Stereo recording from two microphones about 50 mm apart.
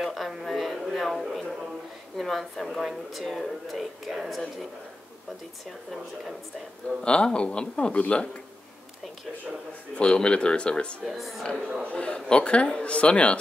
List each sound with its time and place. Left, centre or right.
0.0 s a sound: centre
1.1 s a man's voice: centre
2.1 s speech: centre
7.0 s a man's voice: centre
9.9 s a man's voice: centre
11.1 s speech: centre
11.9 s a man's voice: left